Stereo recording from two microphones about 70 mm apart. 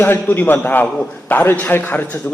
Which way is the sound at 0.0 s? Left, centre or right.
Left.